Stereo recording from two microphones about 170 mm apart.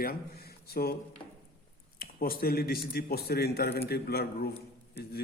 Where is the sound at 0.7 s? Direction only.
65° left (ahead or behind).